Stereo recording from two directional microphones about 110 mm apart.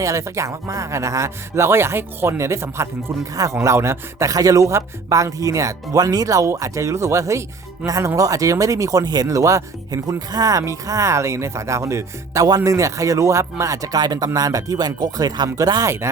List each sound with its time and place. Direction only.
0.0 s speech: 25° right (ahead or behind)